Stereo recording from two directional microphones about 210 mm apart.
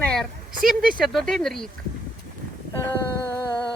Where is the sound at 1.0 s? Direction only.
Centre (ahead or behind).